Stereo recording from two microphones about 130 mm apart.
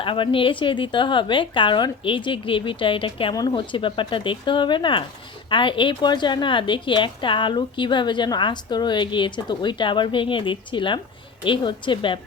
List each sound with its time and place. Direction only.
0.0 s a woman's voice: 40° left (ahead or behind)